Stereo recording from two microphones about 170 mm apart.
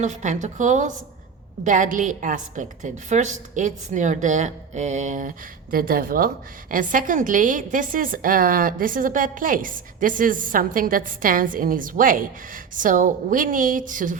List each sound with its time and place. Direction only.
0.0 s a woman's voice: 45° right (ahead or behind)
5.7 s a woman's voice: 60° right (ahead or behind)